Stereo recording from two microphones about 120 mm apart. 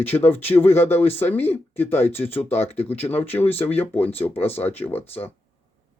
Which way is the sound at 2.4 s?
60° left (ahead or behind).